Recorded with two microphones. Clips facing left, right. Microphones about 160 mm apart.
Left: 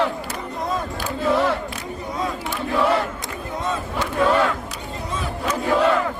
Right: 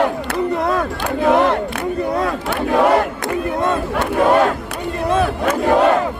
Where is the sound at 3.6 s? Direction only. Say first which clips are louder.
Right 7 dB; 60° right (ahead or behind).